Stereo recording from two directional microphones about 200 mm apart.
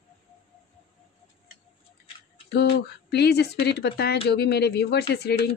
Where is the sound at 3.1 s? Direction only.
55° left (ahead or behind).